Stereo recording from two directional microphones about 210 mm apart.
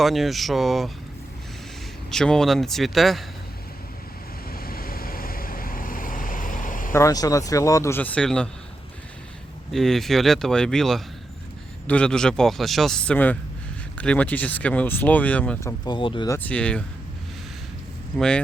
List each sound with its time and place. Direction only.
0.0 s a man's voice: centre (ahead or behind)
2.0 s a man's voice: 5° left (ahead or behind)
4.5 s vehicle: 45° left (ahead or behind)
6.9 s speech: 15° left (ahead or behind)
9.7 s a man's voice: centre (ahead or behind)
15.8 s speech: 20° left (ahead or behind); by 16.8 s 5° left (ahead or behind)
18.2 s a man's voice: 5° left (ahead or behind)